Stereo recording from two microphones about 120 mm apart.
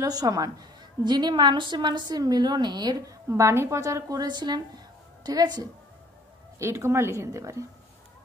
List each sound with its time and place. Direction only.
0.0 s a woman's voice: 30° right (ahead or behind)
6.6 s a woman's voice: 20° right (ahead or behind)